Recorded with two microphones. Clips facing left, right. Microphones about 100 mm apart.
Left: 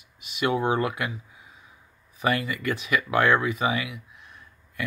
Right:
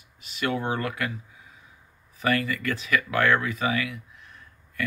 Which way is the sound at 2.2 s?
20° left (ahead or behind).